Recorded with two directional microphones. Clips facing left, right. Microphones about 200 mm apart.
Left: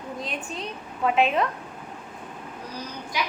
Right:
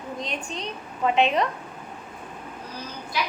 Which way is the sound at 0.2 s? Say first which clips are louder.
Even; 5° left (ahead or behind).